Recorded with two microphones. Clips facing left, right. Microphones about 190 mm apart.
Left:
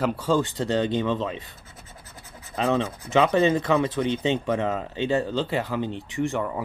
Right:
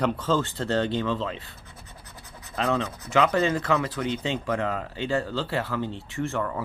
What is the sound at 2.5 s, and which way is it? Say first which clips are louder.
Speech: left 2 dB; 20° left (ahead or behind).